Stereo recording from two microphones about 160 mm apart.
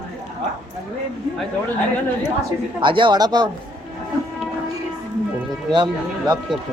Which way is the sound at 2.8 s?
30° right (ahead or behind).